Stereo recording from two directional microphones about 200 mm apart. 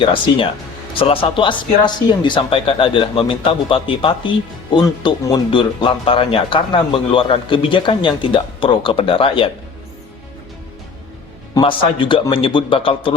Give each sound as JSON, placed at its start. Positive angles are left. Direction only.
{"t": 0.0, "sound": "speech", "side_deg": 25}
{"t": 11.5, "sound": "speech", "side_deg": 25}